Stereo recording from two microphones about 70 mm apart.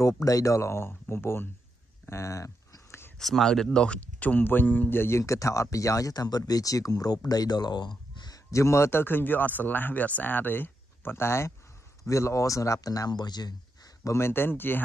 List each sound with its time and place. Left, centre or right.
0.0 s speech: left
2.0 s a sound: left
3.2 s speech: centre; by 7.9 s left
8.5 s speech: left
14.0 s speech: left